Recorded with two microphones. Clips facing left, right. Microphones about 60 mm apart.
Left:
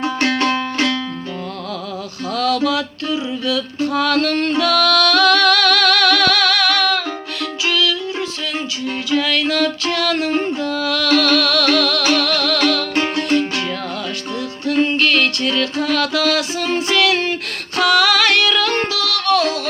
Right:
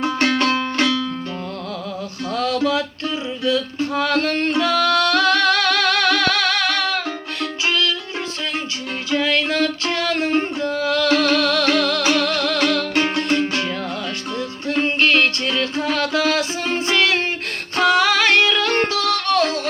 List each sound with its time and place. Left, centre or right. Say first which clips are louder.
0.0 s music: even; centre
2.3 s music: left 3 dB; right
2.6 s a sound: left 1 dB; right
7.7 s music: left 3 dB; right
9.0 s music: left 1 dB; right
14.7 s music: left 2 dB; right